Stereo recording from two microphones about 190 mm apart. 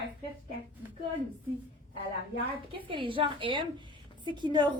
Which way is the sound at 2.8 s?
25° right (ahead or behind).